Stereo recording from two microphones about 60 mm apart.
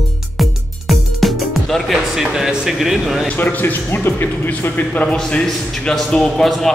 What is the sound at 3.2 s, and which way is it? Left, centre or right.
Speech, left.